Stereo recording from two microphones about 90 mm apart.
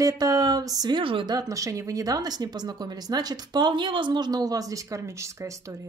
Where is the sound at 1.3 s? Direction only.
40° right (ahead or behind).